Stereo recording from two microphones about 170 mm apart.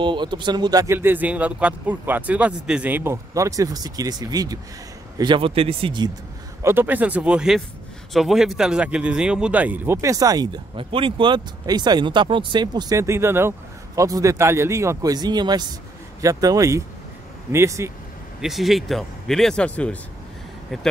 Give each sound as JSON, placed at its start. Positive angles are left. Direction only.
{"t": 0.0, "sound": "speech", "side_deg": -25}
{"t": 6.6, "sound": "speech", "side_deg": -10}
{"t": 18.4, "sound": "speech", "side_deg": 0}